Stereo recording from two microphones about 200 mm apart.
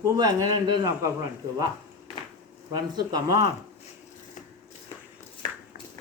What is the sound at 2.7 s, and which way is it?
Speech, 20° right (ahead or behind).